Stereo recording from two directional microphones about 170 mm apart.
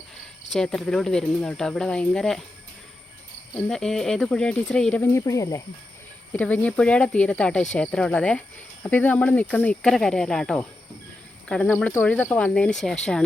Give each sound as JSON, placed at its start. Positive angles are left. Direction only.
{"t": 0.5, "sound": "speech", "side_deg": 5}
{"t": 3.5, "sound": "speech", "side_deg": 5}
{"t": 5.2, "sound": "speech", "side_deg": 20}